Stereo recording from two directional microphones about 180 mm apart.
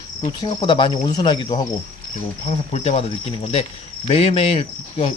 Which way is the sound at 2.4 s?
35° left (ahead or behind).